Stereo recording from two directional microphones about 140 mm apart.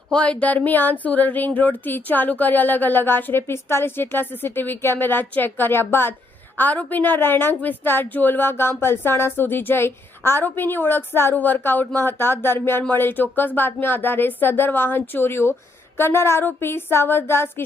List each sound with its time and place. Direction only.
0.1 s speech: 10° left (ahead or behind)